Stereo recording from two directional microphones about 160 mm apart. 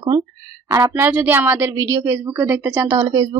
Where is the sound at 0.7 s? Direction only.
15° right (ahead or behind).